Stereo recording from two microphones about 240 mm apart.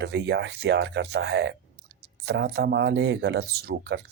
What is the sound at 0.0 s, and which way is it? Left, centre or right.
Speech, right.